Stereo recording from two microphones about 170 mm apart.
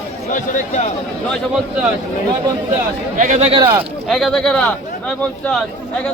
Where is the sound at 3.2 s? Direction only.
45° right (ahead or behind).